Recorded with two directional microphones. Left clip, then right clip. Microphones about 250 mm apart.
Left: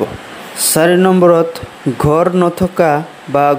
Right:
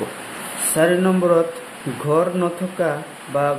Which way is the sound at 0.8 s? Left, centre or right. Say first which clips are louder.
Left 7 dB; left.